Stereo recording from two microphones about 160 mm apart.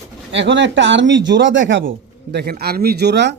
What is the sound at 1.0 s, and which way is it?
Speech, 90° right.